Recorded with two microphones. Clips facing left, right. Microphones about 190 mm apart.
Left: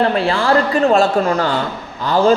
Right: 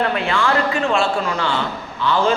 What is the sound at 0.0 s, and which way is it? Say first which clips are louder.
A man's voice: left 4 dB; 35° left (ahead or behind).